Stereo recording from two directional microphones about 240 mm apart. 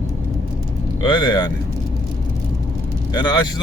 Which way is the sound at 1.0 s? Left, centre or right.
Centre.